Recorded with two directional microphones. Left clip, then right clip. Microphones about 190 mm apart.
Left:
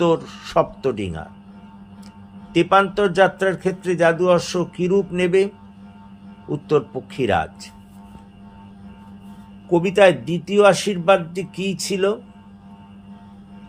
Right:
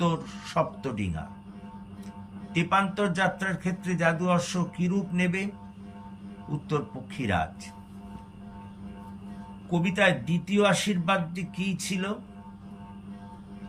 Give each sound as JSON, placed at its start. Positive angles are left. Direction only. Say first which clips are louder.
{"t": 0.0, "sound": "speech", "louder": "left 11 dB", "side_deg": 25}
{"t": 2.5, "sound": "speech", "louder": "left 10 dB", "side_deg": 25}
{"t": 6.7, "sound": "speech", "louder": "left 12 dB", "side_deg": 25}
{"t": 9.7, "sound": "speech", "louder": "left 10 dB", "side_deg": 30}